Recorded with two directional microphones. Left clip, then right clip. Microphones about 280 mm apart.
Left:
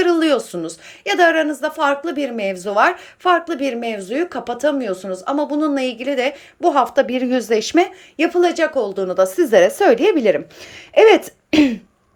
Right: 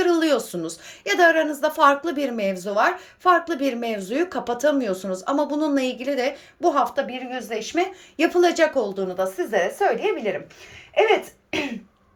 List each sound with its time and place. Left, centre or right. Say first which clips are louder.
0.0 s a woman's voice: left 4 dB; centre
8.1 s a woman's voice: left 2 dB; centre
9.0 s speech: left 9 dB; centre